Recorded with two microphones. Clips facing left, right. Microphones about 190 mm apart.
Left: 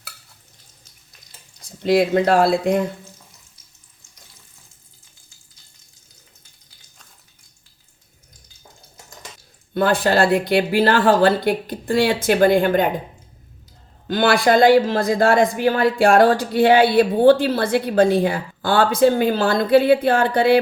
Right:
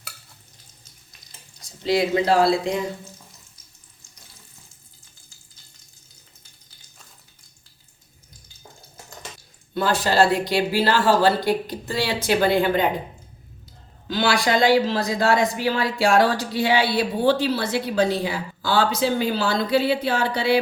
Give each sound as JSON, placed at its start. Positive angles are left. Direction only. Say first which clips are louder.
{"t": 1.8, "sound": "speech", "louder": "left 4 dB", "side_deg": 55}
{"t": 9.7, "sound": "speech", "louder": "left 2 dB", "side_deg": 55}
{"t": 14.1, "sound": "speech", "louder": "left 5 dB", "side_deg": 55}